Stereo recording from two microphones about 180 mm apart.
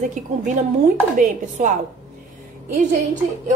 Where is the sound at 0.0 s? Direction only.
45° right (ahead or behind).